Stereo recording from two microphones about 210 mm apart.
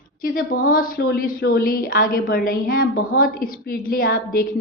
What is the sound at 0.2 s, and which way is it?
A woman's voice, 40° left (ahead or behind).